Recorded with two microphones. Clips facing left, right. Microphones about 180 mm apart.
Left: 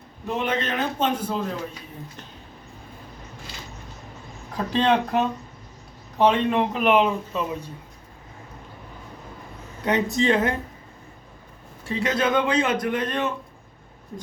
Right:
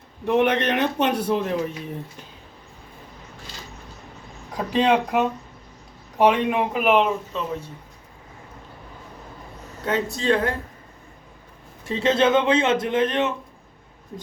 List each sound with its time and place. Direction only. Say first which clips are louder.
0.3 s a man's voice: right 6 dB; 65° right (ahead or behind)
4.5 s speech: right 1 dB; 10° right (ahead or behind)
6.9 s speech: even; centre (ahead or behind)
9.8 s speech: left 2 dB; 20° left (ahead or behind)
11.9 s a man's voice: right 4 dB; 25° right (ahead or behind)